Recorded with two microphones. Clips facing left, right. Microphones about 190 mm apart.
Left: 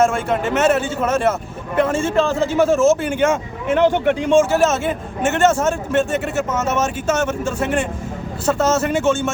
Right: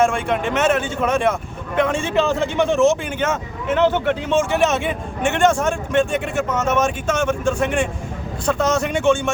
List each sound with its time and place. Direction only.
0.0 s speech: 5° left (ahead or behind)